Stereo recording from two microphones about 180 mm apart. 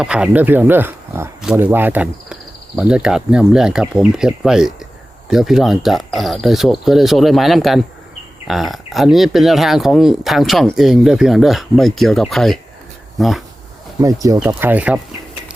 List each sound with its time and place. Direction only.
0.0 s speech: 5° right (ahead or behind)
14.0 s speech: 20° right (ahead or behind)
14.3 s speech: 10° right (ahead or behind)